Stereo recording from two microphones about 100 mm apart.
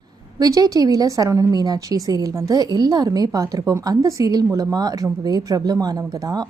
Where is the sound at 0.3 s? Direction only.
40° right (ahead or behind).